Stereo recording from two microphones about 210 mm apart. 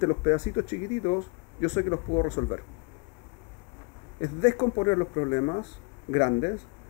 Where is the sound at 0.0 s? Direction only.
25° left (ahead or behind).